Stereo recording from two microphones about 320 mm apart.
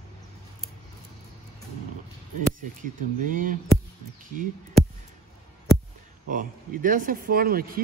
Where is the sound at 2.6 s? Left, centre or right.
Right.